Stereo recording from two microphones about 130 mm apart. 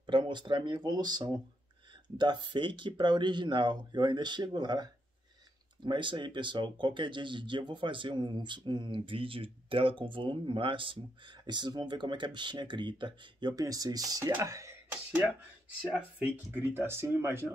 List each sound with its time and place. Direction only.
0.0 s speech: 40° right (ahead or behind)
5.9 s speech: 40° right (ahead or behind); by 17.5 s 20° right (ahead or behind)